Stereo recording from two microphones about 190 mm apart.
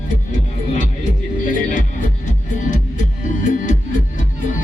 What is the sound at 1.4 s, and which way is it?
Music, 45° left (ahead or behind).